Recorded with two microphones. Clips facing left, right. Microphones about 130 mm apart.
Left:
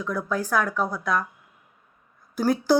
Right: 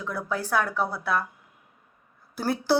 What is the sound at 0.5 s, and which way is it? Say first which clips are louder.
Speech: even; 30° right (ahead or behind).